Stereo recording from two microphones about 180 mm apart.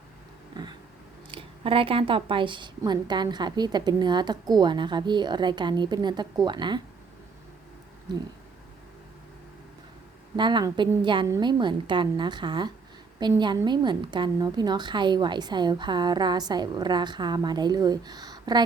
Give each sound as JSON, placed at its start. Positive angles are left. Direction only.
{"t": 0.5, "sound": "cat", "side_deg": -25}
{"t": 1.3, "sound": "a woman's voice", "side_deg": -30}
{"t": 8.1, "sound": "a woman's voice", "side_deg": -25}
{"t": 10.3, "sound": "a woman's voice", "side_deg": -25}